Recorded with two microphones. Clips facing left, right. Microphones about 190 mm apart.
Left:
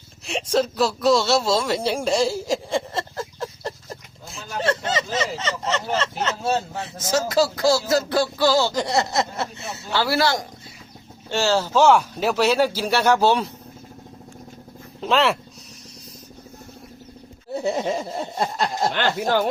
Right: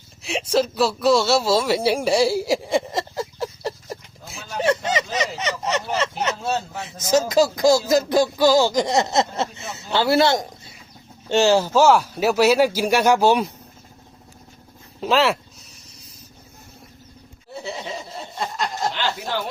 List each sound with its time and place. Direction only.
0.3 s speech: 5° right (ahead or behind)
4.4 s a sound: 15° right (ahead or behind)
5.4 s speech: 15° right (ahead or behind)
15.0 s speech: centre (ahead or behind)
17.6 s speech: 45° left (ahead or behind)
18.9 s speech: 55° left (ahead or behind)